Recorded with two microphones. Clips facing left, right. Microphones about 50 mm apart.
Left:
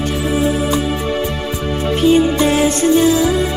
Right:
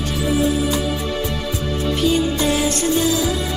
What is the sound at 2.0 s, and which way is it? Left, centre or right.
Music, left.